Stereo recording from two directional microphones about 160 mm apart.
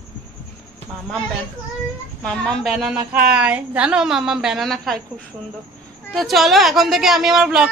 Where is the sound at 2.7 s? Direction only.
5° right (ahead or behind).